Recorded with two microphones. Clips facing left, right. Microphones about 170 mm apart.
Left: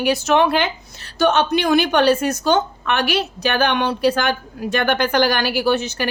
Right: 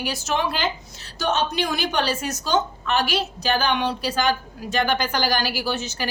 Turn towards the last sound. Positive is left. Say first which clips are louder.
# left 8 dB
turn(degrees=60)  # may be behind; listen again after turning